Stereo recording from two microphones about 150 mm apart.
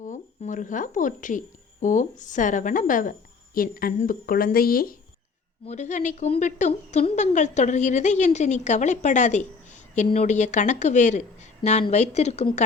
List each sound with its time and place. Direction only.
0.0 s a sound: 55° left (ahead or behind)
1.8 s a woman's voice: 55° left (ahead or behind); by 4.9 s 75° left (ahead or behind)
5.6 s a woman's voice: 50° left (ahead or behind)